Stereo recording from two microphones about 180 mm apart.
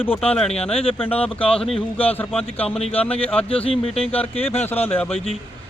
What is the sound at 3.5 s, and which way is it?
Speech, 30° left (ahead or behind).